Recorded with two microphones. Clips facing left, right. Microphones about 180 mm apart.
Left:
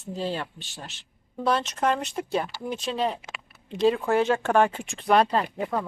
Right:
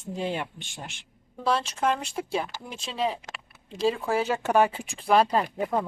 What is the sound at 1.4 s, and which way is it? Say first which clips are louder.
Speech: left 1 dB; centre (ahead or behind).